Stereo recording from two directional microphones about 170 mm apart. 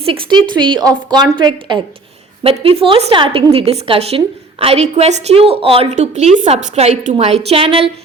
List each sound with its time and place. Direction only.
0.0 s a woman's voice: 30° right (ahead or behind)